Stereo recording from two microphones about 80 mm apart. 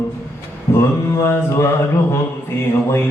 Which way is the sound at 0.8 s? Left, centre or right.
Left.